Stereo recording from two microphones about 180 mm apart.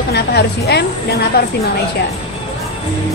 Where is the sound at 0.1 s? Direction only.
65° left (ahead or behind).